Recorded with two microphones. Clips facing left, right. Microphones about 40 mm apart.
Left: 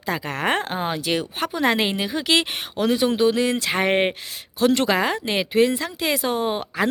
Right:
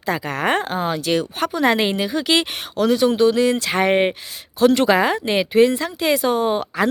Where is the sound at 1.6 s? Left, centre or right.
Centre.